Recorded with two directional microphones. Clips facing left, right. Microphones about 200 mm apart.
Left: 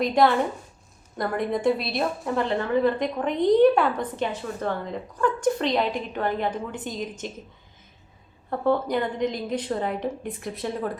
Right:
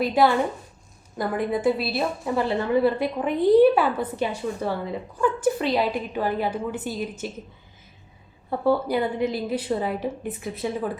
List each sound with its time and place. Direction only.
0.0 s a woman's voice: 5° right (ahead or behind)
8.4 s a woman's voice: 5° right (ahead or behind)